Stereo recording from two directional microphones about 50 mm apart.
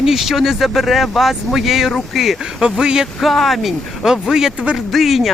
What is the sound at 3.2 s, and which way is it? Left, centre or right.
Speech, centre.